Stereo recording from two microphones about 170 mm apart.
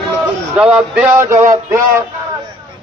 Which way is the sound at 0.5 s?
Centre (ahead or behind).